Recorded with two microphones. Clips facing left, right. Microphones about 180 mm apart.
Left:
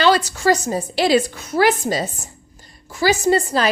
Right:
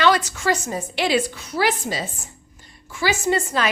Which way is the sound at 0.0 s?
30° left (ahead or behind).